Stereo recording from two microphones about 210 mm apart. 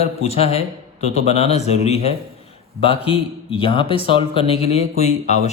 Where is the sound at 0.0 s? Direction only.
30° left (ahead or behind).